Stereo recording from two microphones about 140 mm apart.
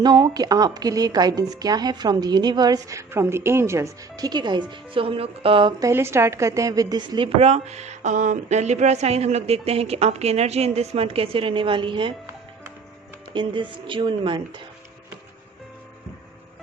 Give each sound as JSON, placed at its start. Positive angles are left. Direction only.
{"t": 0.0, "sound": "a woman's voice", "side_deg": -30}
{"t": 5.8, "sound": "a woman's voice", "side_deg": -20}
{"t": 7.3, "sound": "speech", "side_deg": -50}
{"t": 13.3, "sound": "speech", "side_deg": -35}